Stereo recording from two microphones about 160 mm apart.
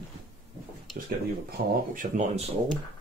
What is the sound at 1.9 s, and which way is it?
Speech, 50° right (ahead or behind).